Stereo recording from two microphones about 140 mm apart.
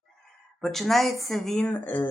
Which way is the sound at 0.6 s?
Centre (ahead or behind).